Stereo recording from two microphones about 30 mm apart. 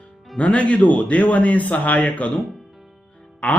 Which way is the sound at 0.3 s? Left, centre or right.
Left.